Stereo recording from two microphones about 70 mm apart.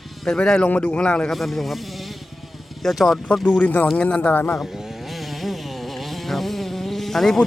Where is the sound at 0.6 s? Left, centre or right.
Left.